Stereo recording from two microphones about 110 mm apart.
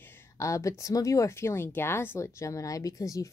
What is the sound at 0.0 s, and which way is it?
Speech, 25° left (ahead or behind).